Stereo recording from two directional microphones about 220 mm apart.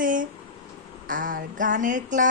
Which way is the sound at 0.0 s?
35° right (ahead or behind).